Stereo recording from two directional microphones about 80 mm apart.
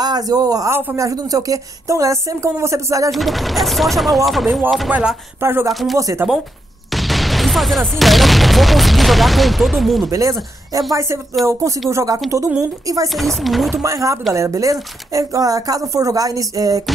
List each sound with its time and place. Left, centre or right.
0.0 s a man's voice: right
0.7 s speech: right
0.9 s speech: right
3.1 s speech: centre
5.4 s speech: right
5.7 s speech: centre
6.2 s speech: right
6.9 s speech: centre
10.0 s speech: right
13.1 s speech: centre
13.8 s speech: right